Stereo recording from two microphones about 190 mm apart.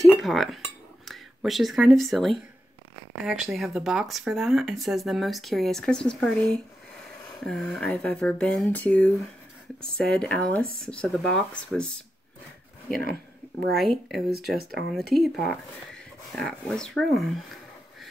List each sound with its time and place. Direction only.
0.2 s speech: centre (ahead or behind)
13.0 s a sound: 55° right (ahead or behind)
13.7 s speech: centre (ahead or behind)